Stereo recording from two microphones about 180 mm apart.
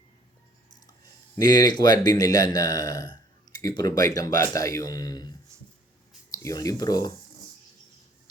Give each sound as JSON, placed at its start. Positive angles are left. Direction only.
{"t": 1.4, "sound": "speech", "side_deg": 20}
{"t": 6.3, "sound": "speech", "side_deg": 20}